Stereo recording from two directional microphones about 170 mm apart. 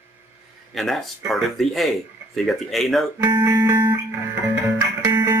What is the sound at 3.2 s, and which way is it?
Music, 25° right (ahead or behind).